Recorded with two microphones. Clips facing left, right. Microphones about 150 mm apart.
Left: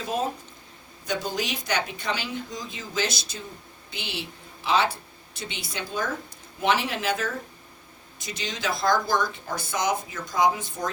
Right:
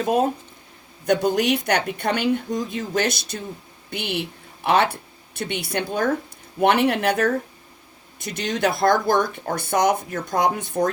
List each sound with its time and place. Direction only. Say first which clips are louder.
0.0 s speech: right 8 dB; 60° right (ahead or behind)